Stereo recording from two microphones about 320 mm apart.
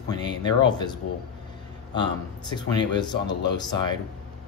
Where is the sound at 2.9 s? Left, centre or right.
Centre.